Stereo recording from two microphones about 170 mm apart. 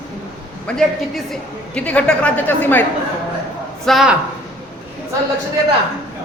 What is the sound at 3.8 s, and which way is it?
Speech, centre (ahead or behind).